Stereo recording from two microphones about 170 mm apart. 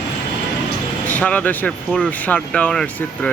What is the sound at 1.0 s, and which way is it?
Speech, 10° left (ahead or behind).